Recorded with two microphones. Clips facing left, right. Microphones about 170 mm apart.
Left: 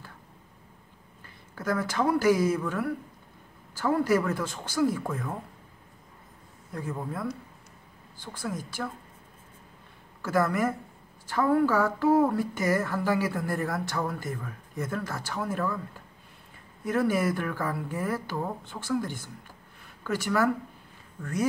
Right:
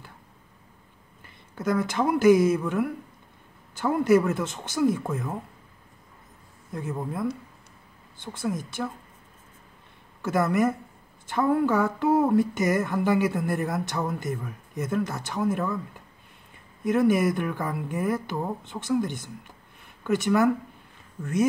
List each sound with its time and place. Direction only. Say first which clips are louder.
1.5 s speech: right 3 dB; 20° right (ahead or behind)
6.7 s speech: right 2 dB; 20° right (ahead or behind)
10.2 s speech: right 3 dB; 20° right (ahead or behind)
16.8 s speech: right 4 dB; 20° right (ahead or behind)